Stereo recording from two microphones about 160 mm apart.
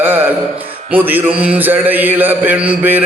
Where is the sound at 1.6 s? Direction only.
10° right (ahead or behind).